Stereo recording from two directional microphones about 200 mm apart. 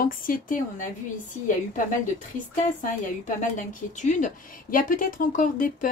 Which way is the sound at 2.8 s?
40° left (ahead or behind).